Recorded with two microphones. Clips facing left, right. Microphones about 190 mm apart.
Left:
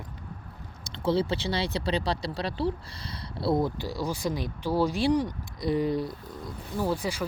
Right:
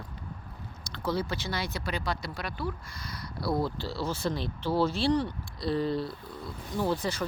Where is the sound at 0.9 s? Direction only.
25° left (ahead or behind).